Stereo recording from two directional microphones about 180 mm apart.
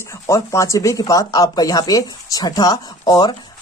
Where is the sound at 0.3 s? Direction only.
15° left (ahead or behind).